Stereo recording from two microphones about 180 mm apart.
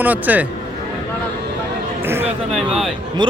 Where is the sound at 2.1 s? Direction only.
10° right (ahead or behind).